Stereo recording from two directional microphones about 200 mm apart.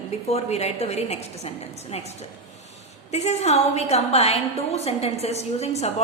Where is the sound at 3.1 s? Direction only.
35° left (ahead or behind).